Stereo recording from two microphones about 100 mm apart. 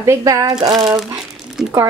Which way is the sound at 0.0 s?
30° right (ahead or behind).